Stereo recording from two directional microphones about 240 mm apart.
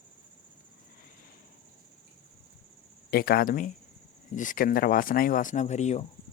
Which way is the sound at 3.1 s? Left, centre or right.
Left.